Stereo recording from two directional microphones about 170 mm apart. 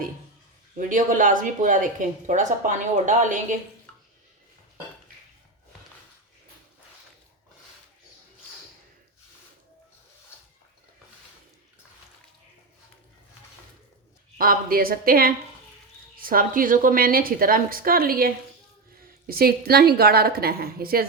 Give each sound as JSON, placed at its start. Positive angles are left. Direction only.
{"t": 0.8, "sound": "speech", "side_deg": -50}
{"t": 14.3, "sound": "a woman's voice", "side_deg": -60}